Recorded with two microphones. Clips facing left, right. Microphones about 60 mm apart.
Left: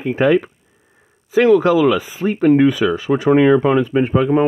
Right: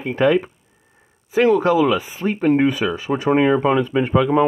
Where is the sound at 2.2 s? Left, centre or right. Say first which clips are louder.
Left 4 dB; centre.